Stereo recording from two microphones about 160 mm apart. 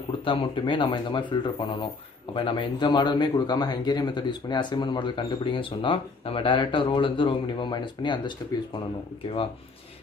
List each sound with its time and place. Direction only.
0.2 s a man's voice: 30° left (ahead or behind)